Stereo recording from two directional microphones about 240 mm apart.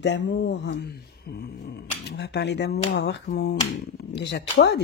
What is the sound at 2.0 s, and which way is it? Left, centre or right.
Speech, left.